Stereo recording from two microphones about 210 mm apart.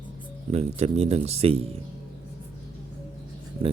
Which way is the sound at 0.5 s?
30° right (ahead or behind).